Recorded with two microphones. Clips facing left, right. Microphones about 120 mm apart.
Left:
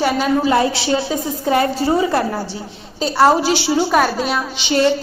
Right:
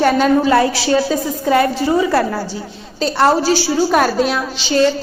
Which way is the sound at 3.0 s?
10° left (ahead or behind).